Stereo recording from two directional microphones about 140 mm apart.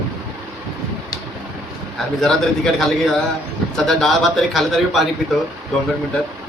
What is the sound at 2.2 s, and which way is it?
A man's voice, 5° left (ahead or behind).